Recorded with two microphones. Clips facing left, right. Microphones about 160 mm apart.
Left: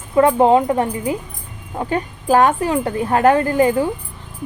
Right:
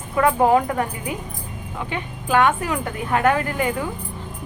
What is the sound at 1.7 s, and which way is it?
A woman's voice, 40° left (ahead or behind).